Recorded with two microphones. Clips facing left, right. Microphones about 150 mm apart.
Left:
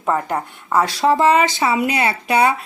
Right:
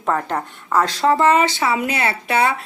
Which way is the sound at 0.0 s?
10° left (ahead or behind).